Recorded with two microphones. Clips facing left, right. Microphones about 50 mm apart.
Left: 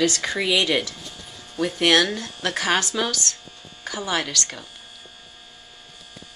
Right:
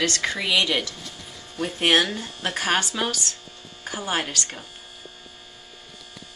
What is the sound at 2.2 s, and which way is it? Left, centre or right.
A woman's voice, centre.